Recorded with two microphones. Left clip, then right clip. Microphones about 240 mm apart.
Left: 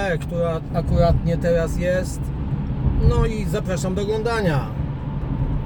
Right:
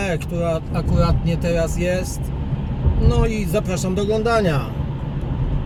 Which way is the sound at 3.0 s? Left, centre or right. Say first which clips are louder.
Right 2 dB; centre.